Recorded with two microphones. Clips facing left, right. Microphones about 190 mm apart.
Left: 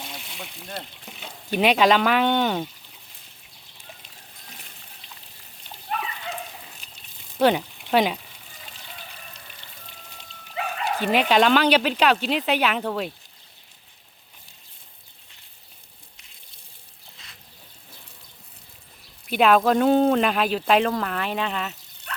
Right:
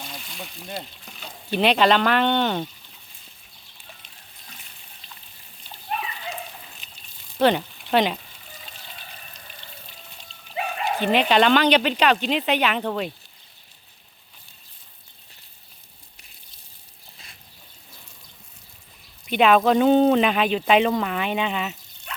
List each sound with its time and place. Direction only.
0.3 s a sound: 15° left (ahead or behind)
1.0 s frying: 20° left (ahead or behind)
1.5 s speech: 10° left (ahead or behind)
7.3 s speech: 5° left (ahead or behind)
9.6 s raindrop: 50° left (ahead or behind)
11.0 s speech: 5° left (ahead or behind)
17.2 s water: 30° right (ahead or behind)
19.2 s speech: centre (ahead or behind)